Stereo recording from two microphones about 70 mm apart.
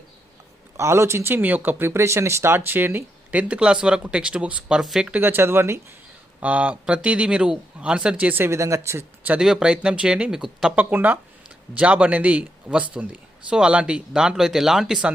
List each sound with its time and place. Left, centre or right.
0.8 s speech: right
3.5 s speech: centre
5.2 s speech: right
6.4 s speech: right
8.4 s speech: right
9.4 s speech: centre
10.8 s speech: right
11.4 s a man's voice: centre